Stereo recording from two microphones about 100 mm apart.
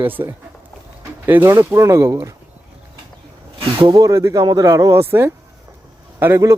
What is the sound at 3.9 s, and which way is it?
Speech, 35° right (ahead or behind).